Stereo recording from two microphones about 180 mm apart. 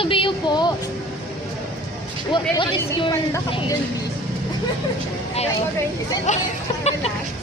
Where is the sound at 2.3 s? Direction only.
25° left (ahead or behind).